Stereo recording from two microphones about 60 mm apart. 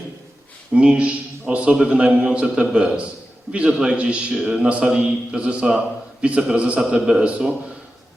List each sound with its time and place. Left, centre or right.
0.7 s a man's voice: centre